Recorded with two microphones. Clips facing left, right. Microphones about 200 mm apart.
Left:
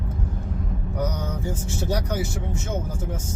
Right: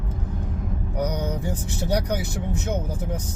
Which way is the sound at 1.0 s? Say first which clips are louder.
Right 2 dB; 15° right (ahead or behind).